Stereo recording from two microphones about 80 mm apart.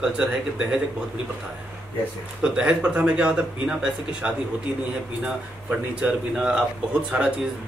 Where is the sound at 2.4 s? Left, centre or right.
Centre.